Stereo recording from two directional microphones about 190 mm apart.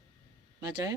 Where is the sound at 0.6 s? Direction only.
20° right (ahead or behind).